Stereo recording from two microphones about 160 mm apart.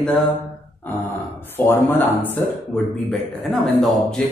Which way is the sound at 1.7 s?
15° left (ahead or behind).